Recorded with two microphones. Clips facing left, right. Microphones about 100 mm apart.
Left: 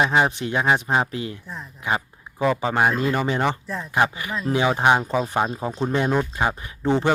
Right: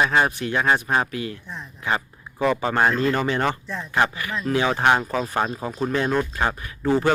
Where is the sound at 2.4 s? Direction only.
5° left (ahead or behind).